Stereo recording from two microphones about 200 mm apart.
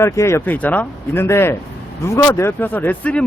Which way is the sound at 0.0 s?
15° left (ahead or behind).